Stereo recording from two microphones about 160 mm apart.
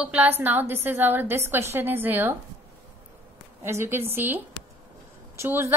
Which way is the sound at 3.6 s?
15° right (ahead or behind).